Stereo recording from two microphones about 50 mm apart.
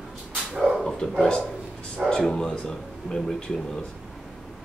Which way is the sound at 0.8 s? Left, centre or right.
Centre.